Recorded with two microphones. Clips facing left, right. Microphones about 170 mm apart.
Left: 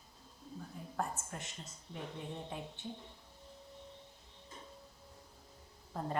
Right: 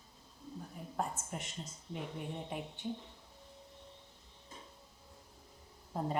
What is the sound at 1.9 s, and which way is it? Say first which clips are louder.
Speech: right 2 dB; 15° right (ahead or behind).